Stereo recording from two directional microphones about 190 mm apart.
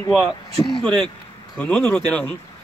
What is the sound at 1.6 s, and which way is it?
Speech, 5° left (ahead or behind).